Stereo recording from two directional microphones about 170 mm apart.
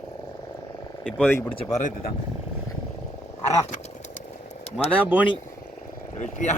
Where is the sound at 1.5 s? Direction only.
40° left (ahead or behind).